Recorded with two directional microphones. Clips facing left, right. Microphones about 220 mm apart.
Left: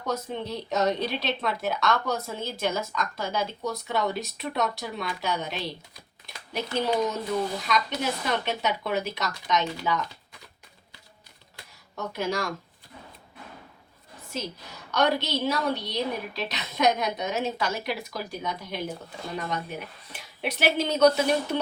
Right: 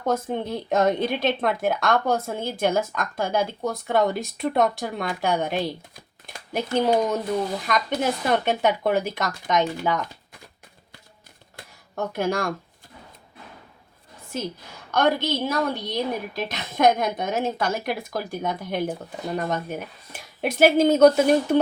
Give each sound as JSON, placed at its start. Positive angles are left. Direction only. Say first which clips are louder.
{"t": 0.0, "sound": "a woman's voice", "louder": "right 6 dB", "side_deg": -50}
{"t": 11.5, "sound": "a sound", "louder": "right 7 dB", "side_deg": -50}
{"t": 14.8, "sound": "a woman's voice", "louder": "right 3 dB", "side_deg": -50}